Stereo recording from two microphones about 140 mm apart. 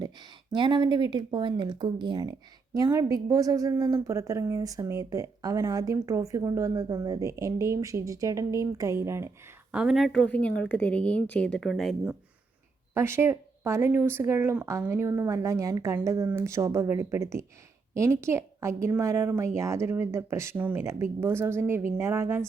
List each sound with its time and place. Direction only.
0.0 s a woman's voice: 30° right (ahead or behind)
9.7 s a woman's voice: centre (ahead or behind)
12.9 s a woman's voice: 20° right (ahead or behind)